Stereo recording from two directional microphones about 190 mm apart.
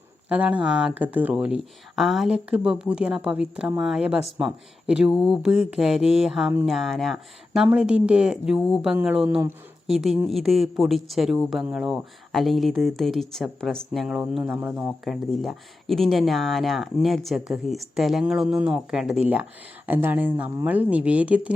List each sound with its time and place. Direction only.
0.3 s speech: 5° right (ahead or behind)
9.2 s speech: 15° right (ahead or behind)
9.8 s speech: centre (ahead or behind)
14.8 s speech: centre (ahead or behind)